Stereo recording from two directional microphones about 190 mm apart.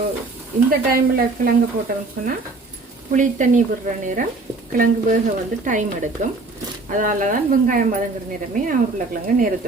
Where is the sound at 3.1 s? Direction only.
40° right (ahead or behind).